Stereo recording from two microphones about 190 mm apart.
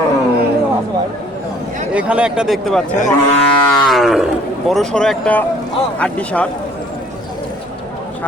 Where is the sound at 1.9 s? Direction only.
5° right (ahead or behind).